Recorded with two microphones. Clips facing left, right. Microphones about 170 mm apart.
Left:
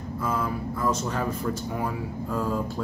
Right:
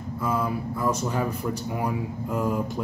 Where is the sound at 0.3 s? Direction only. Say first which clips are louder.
Right 2 dB; 10° right (ahead or behind).